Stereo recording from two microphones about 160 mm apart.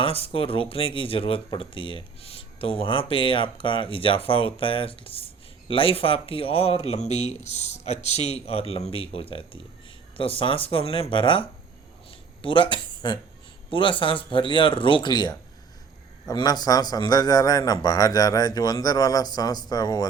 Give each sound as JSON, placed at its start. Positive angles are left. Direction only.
{"t": 0.0, "sound": "a man's voice", "side_deg": 35}